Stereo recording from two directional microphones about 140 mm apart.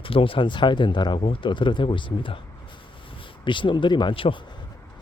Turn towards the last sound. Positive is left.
turn(degrees=40)  # may be behind; listen again after turning